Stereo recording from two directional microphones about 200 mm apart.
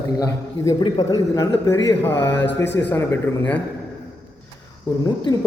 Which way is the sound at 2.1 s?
60° left (ahead or behind).